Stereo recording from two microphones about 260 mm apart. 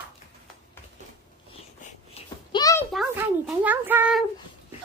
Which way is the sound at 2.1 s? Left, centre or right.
Centre.